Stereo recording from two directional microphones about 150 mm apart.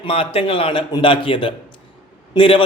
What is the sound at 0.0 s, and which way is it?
A man's voice, 40° left (ahead or behind).